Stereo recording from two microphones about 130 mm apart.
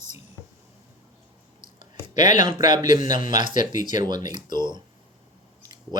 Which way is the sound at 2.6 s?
35° right (ahead or behind).